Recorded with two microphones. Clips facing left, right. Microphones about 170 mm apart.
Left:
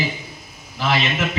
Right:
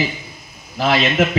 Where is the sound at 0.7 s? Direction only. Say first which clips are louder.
Right 5 dB; 50° right (ahead or behind).